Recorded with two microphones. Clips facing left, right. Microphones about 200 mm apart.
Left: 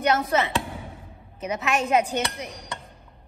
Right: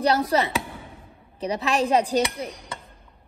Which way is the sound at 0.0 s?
35° right (ahead or behind).